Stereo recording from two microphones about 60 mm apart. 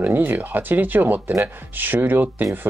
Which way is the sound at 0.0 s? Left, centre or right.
Right.